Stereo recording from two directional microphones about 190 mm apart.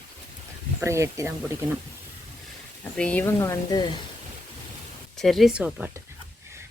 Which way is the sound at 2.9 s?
5° left (ahead or behind).